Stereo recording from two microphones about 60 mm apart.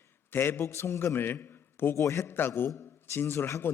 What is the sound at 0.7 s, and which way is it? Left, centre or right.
A man's voice, left.